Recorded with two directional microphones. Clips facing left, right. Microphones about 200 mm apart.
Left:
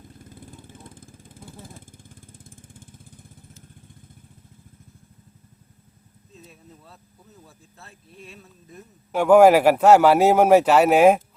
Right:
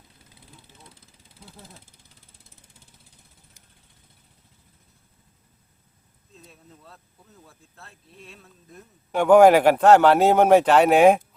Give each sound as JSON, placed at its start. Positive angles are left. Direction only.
{"t": 0.1, "sound": "vehicle", "side_deg": 50}
{"t": 6.3, "sound": "a sound", "side_deg": 0}
{"t": 7.4, "sound": "a man's voice", "side_deg": 0}